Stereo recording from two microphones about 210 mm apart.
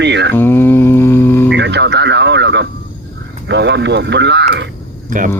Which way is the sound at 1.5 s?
55° right (ahead or behind).